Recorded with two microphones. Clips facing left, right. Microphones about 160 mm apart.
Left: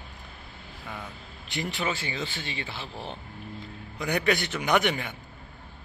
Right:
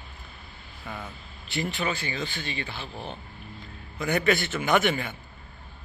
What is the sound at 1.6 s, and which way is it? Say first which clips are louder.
Speech: right 1 dB; 20° left (ahead or behind).